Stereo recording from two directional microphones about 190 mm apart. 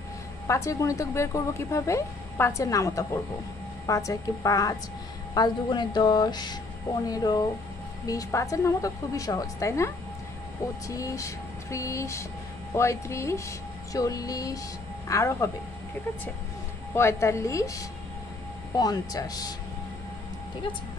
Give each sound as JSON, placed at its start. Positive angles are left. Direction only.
{"t": 0.5, "sound": "a woman's voice", "side_deg": 15}
{"t": 10.9, "sound": "speech", "side_deg": 15}
{"t": 16.9, "sound": "a woman's voice", "side_deg": 15}